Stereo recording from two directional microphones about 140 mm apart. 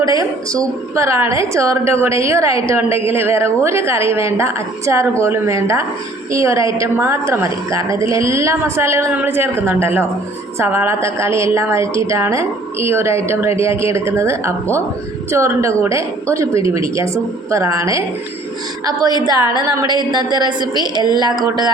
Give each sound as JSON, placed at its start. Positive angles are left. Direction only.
{"t": 0.0, "sound": "a woman's voice", "side_deg": -25}